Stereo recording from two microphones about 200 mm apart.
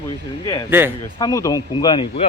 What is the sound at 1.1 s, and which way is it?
Speech, 15° left (ahead or behind).